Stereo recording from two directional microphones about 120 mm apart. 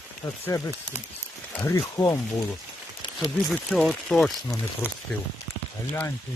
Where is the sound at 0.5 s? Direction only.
30° left (ahead or behind).